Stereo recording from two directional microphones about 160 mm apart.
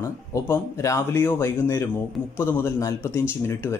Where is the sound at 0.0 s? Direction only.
20° left (ahead or behind).